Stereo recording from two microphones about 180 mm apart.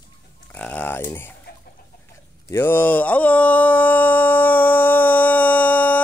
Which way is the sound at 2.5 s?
10° left (ahead or behind).